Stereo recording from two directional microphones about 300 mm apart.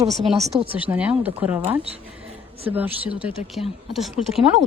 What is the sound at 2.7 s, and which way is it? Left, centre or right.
A woman's voice, centre.